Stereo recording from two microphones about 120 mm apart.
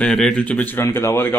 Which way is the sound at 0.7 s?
20° left (ahead or behind).